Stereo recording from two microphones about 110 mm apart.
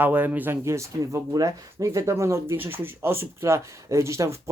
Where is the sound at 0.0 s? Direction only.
15° right (ahead or behind).